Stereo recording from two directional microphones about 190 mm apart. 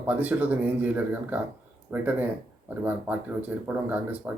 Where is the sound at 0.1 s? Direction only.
10° right (ahead or behind).